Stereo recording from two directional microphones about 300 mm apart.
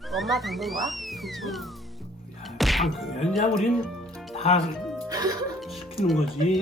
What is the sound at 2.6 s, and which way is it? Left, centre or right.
Music, centre.